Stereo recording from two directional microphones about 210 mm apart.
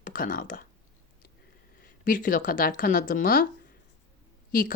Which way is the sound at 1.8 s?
40° left (ahead or behind).